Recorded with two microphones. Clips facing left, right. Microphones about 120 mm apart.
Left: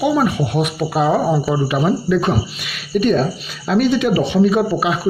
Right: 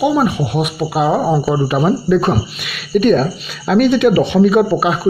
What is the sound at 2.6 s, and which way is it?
Speech, 70° right (ahead or behind).